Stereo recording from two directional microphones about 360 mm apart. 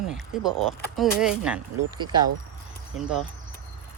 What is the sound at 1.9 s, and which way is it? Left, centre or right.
Speech, right.